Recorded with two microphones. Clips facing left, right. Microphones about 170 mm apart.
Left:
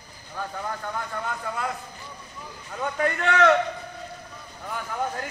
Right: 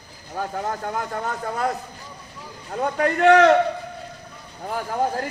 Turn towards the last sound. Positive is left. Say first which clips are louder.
# right 6 dB
turn(degrees=-35)  # may be behind; listen again after turning